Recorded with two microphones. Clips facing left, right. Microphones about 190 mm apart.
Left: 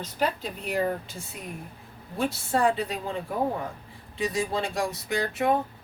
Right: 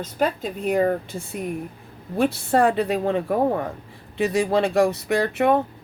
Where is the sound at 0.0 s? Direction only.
50° right (ahead or behind).